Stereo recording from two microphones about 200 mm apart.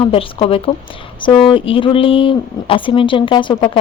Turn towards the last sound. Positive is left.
turn(degrees=25)  # may be behind; listen again after turning